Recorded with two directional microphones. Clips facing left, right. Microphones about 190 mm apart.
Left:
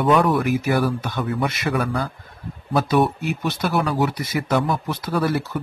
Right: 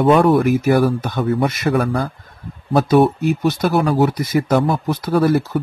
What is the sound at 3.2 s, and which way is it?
Speech, 45° right (ahead or behind).